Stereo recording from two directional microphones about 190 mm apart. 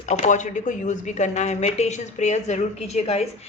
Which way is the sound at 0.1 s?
40° left (ahead or behind).